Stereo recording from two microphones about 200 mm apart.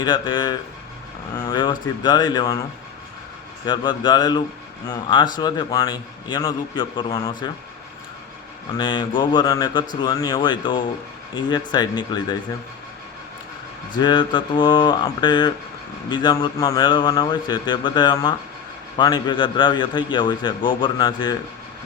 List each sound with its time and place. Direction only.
0.0 s a man's voice: 20° left (ahead or behind)
3.7 s a man's voice: 20° left (ahead or behind)
8.8 s a man's voice: 20° left (ahead or behind)
13.9 s a man's voice: 20° left (ahead or behind)